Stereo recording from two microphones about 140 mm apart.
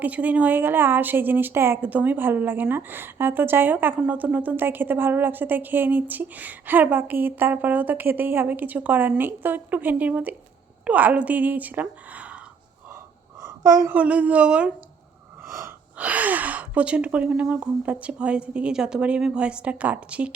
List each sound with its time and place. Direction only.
0.0 s a woman's voice: 10° right (ahead or behind)
13.4 s a sound: 25° right (ahead or behind)
13.9 s a woman's voice: 10° right (ahead or behind)
16.0 s a woman's voice: 10° right (ahead or behind)